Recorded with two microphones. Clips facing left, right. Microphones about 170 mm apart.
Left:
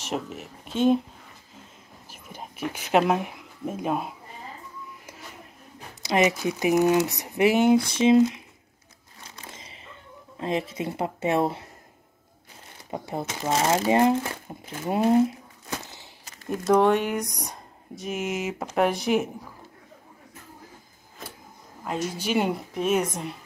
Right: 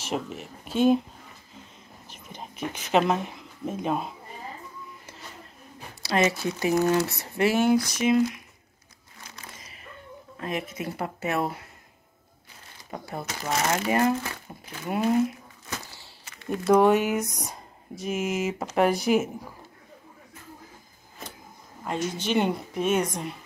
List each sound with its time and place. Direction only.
0.0 s speech: centre (ahead or behind)
2.0 s a sound: 5° left (ahead or behind)
6.0 s speech: 15° left (ahead or behind)
9.5 s a sound: 25° left (ahead or behind)
10.4 s speech: 25° left (ahead or behind)
12.9 s speech: 25° left (ahead or behind)
14.9 s speech: 30° left (ahead or behind)
15.7 s a sound: 20° left (ahead or behind)
16.6 s speech: 5° right (ahead or behind)
21.8 s speech: 5° left (ahead or behind)